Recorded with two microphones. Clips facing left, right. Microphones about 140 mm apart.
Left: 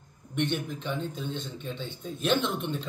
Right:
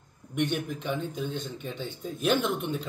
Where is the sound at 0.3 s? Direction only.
10° right (ahead or behind).